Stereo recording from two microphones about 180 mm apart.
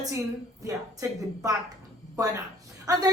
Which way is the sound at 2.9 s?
20° right (ahead or behind).